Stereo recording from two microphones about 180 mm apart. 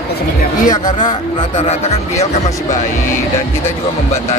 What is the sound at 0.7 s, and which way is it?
Speech, 25° left (ahead or behind).